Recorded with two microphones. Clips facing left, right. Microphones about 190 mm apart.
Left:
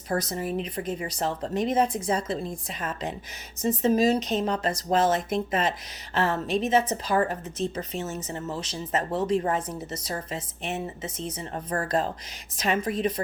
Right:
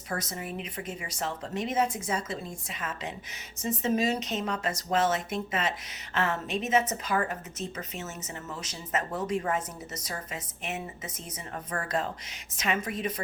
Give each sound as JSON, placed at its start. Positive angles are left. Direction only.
{"t": 0.1, "sound": "a woman's voice", "side_deg": 35}